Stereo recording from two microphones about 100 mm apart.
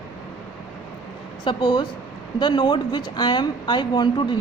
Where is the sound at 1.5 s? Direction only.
50° left (ahead or behind).